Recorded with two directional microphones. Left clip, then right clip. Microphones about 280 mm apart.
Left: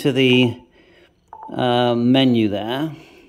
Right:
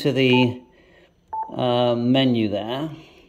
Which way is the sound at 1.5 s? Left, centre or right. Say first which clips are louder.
Left 3 dB; centre.